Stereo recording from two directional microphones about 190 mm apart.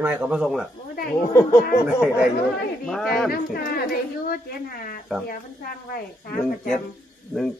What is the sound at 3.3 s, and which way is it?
A woman's voice, 50° left (ahead or behind).